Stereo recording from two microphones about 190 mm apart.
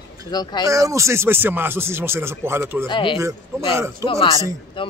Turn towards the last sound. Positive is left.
turn(degrees=25)  # may be behind; listen again after turning